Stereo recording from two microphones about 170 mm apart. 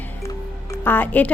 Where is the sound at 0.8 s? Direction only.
10° left (ahead or behind).